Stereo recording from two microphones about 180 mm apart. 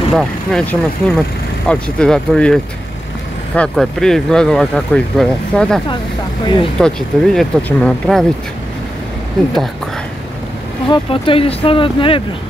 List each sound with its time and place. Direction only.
0.1 s speech: centre (ahead or behind)
6.8 s speech: 5° left (ahead or behind)
10.9 s speech: 30° left (ahead or behind)